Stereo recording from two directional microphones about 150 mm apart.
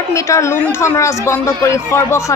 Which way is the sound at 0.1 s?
20° left (ahead or behind).